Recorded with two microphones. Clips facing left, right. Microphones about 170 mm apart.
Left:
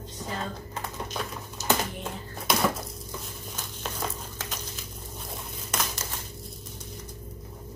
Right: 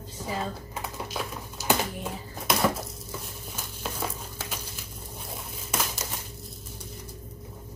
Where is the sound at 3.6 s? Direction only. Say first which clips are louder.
Right 1 dB; 5° right (ahead or behind).